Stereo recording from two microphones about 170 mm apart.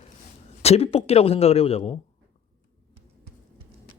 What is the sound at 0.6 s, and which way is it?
A man's voice, 35° left (ahead or behind).